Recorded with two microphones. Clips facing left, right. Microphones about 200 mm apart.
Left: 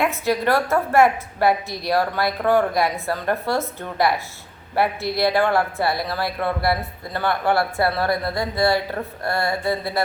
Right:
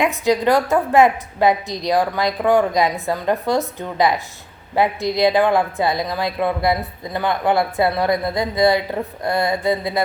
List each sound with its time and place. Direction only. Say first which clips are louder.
0.0 s speech: right 4 dB; 15° right (ahead or behind)